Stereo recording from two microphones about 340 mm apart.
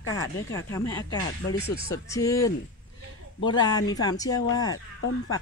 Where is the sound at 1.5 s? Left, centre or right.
Left.